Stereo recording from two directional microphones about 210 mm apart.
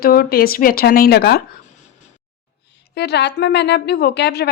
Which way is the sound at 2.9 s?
50° left (ahead or behind).